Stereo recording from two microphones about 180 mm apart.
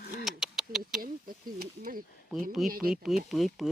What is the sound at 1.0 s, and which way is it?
Speech, 55° right (ahead or behind).